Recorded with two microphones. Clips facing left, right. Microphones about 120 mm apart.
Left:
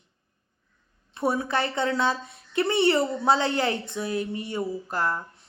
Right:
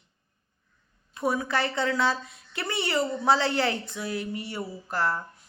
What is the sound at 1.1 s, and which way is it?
Speech, 30° left (ahead or behind).